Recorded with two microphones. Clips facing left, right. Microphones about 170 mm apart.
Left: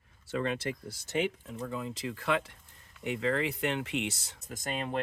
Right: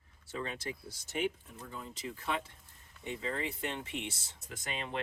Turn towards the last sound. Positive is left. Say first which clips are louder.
# left 5 dB
turn(degrees=45)  # may be behind; listen again after turning